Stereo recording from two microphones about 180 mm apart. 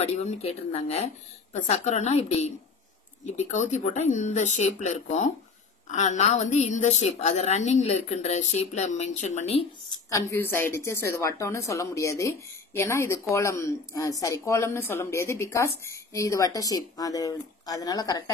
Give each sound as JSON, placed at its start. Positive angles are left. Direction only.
{"t": 0.0, "sound": "a woman's voice", "side_deg": 35}
{"t": 10.3, "sound": "speech", "side_deg": 10}